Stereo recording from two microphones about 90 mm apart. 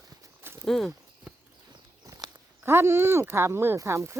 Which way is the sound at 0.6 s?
5° left (ahead or behind).